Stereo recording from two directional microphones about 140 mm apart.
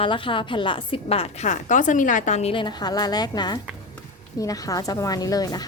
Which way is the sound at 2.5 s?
30° left (ahead or behind).